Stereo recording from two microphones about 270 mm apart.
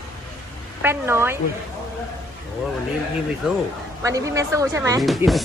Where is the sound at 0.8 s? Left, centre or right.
Centre.